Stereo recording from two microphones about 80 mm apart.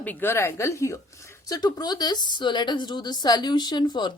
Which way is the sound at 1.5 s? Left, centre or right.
Left.